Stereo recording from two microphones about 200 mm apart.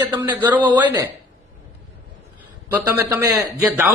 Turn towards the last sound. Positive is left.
turn(degrees=-15)  # may be behind; listen again after turning